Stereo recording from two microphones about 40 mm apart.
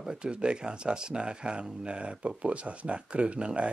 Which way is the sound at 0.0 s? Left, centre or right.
Right.